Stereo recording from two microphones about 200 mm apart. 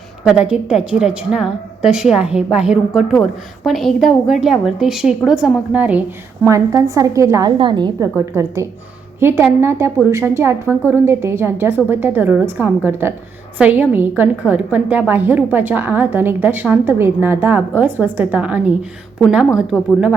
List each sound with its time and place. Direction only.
0.3 s a woman's voice: 5° right (ahead or behind)